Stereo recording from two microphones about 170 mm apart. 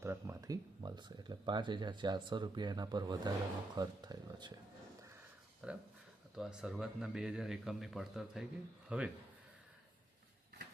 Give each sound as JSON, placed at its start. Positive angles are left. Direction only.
{"t": 0.0, "sound": "speech", "side_deg": -15}
{"t": 5.6, "sound": "speech", "side_deg": -5}